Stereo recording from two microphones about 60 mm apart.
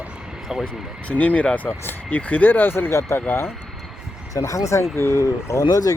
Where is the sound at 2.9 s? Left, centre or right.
Left.